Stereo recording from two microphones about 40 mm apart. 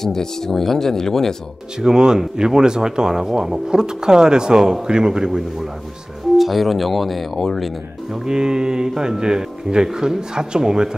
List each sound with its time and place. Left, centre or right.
0.0 s speech: centre
1.8 s a man's voice: centre
6.3 s speech: centre
8.3 s speech: centre